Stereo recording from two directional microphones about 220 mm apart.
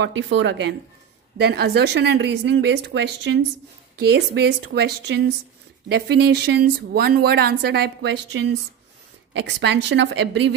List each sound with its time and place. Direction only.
0.0 s speech: 55° right (ahead or behind)